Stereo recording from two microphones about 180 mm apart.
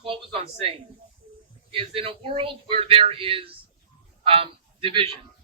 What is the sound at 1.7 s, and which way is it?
A man's voice, 30° right (ahead or behind).